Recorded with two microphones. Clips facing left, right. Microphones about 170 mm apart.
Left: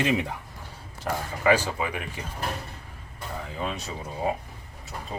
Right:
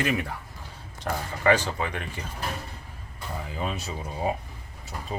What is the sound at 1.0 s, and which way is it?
Speech, 10° left (ahead or behind).